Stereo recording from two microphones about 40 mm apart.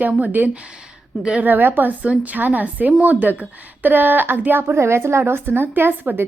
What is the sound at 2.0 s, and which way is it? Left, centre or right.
A woman's voice, right.